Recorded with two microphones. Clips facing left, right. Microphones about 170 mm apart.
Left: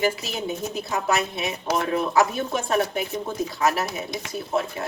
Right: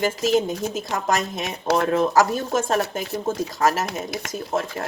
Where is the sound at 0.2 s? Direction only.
45° right (ahead or behind).